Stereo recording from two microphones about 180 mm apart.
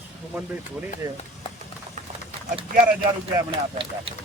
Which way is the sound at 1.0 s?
25° right (ahead or behind).